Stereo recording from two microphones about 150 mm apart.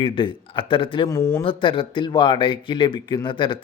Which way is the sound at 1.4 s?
35° left (ahead or behind).